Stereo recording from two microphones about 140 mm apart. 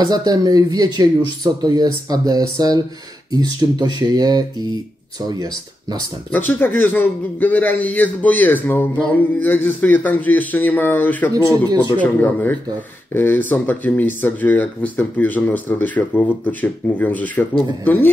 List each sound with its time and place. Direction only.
0.0 s speech: 30° right (ahead or behind)
6.3 s a man's voice: 15° left (ahead or behind)